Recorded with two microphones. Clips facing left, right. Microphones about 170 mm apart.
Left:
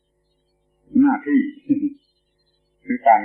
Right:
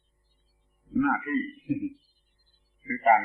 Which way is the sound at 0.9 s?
35° left (ahead or behind).